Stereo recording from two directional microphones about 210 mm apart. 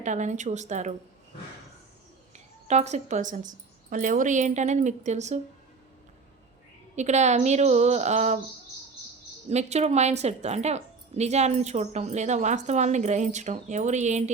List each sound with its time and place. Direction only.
0.0 s a woman's voice: 35° right (ahead or behind)
2.3 s a woman's voice: 30° right (ahead or behind)
6.9 s a woman's voice: 35° right (ahead or behind)
9.5 s a woman's voice: 30° right (ahead or behind)